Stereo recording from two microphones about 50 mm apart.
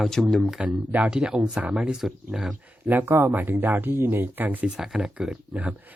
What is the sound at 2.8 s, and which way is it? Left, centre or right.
Speech, right.